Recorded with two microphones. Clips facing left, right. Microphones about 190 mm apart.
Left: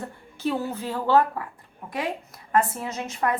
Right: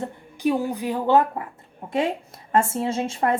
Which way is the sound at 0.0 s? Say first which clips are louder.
Right 5 dB; 15° right (ahead or behind).